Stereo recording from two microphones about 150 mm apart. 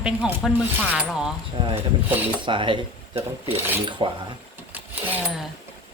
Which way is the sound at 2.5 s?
35° right (ahead or behind).